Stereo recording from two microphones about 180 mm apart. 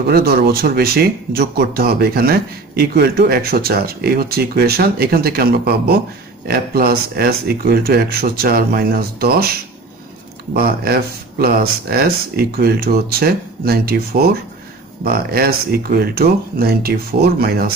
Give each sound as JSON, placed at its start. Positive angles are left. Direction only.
{"t": 0.1, "sound": "speech", "side_deg": -60}
{"t": 10.5, "sound": "speech", "side_deg": -55}